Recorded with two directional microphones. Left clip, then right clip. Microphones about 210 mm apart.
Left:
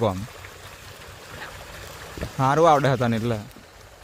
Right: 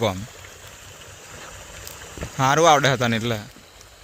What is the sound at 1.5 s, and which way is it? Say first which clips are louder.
Boat: even; 20° right (ahead or behind).